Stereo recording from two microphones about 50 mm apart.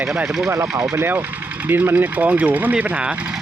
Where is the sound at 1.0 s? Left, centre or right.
Right.